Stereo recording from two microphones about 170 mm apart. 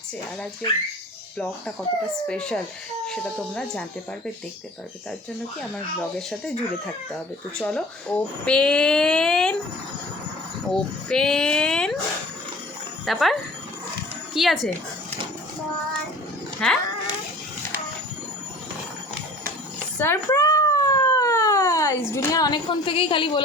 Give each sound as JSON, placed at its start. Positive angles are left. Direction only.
{"t": 2.2, "sound": "speech", "side_deg": 5}
{"t": 5.7, "sound": "speech", "side_deg": 5}
{"t": 10.7, "sound": "speech", "side_deg": 5}
{"t": 13.1, "sound": "speech", "side_deg": 0}
{"t": 14.3, "sound": "speech", "side_deg": 0}
{"t": 16.6, "sound": "speech", "side_deg": 5}
{"t": 20.0, "sound": "a sound", "side_deg": 15}